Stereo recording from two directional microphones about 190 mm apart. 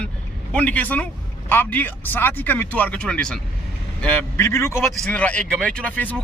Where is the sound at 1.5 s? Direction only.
10° left (ahead or behind).